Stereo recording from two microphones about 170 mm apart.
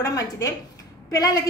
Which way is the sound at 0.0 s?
20° left (ahead or behind).